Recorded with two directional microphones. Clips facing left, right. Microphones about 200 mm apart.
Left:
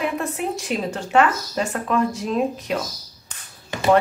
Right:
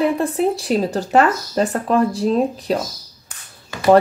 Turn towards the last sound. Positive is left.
turn(degrees=20)  # may be behind; listen again after turning